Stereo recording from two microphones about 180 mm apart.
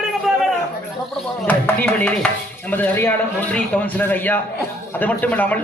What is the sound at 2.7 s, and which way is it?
A man's voice, 10° left (ahead or behind).